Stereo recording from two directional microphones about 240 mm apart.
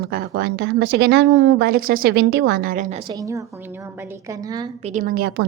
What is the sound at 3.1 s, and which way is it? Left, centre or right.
A woman's voice, centre.